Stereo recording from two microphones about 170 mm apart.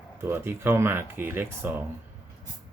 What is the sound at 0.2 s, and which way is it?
Speech, 15° right (ahead or behind).